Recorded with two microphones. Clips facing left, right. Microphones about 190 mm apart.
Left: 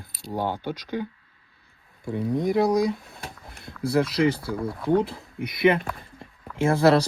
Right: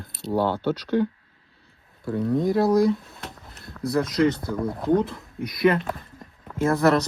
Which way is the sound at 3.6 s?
30° left (ahead or behind).